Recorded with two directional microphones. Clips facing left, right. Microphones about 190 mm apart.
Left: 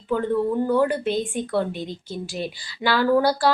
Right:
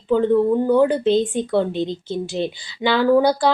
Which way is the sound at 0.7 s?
20° right (ahead or behind).